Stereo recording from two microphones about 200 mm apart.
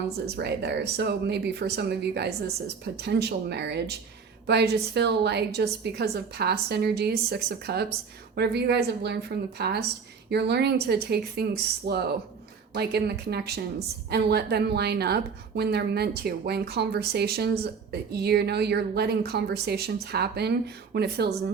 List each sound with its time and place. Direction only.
0.3 s a woman's voice: 55° right (ahead or behind)